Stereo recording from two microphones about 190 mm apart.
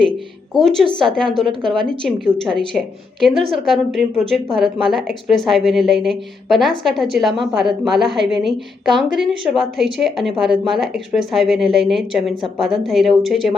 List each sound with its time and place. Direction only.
0.5 s a woman's voice: centre (ahead or behind)